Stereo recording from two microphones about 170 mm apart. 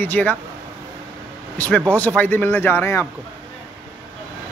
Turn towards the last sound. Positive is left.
turn(degrees=15)  # may be behind; listen again after turning